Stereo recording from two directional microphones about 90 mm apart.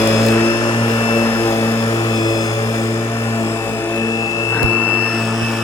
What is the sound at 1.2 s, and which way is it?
Music, 30° left (ahead or behind).